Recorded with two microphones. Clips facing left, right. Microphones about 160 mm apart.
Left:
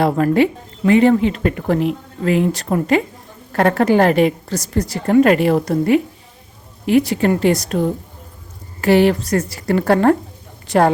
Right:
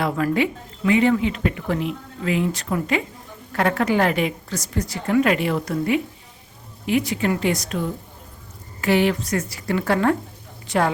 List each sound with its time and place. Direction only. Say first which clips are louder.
0.0 s a woman's voice: left 7 dB; 35° left (ahead or behind)